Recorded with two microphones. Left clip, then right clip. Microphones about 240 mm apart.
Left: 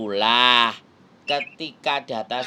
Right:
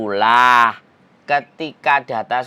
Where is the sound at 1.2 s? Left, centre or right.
Centre.